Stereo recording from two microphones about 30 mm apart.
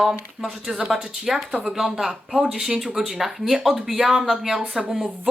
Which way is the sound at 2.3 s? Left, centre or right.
Right.